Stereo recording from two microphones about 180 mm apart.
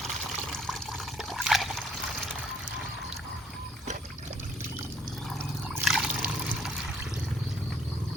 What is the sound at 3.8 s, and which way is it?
Boat, 40° right (ahead or behind).